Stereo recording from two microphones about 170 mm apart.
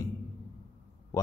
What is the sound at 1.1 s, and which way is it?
Speech, 20° left (ahead or behind).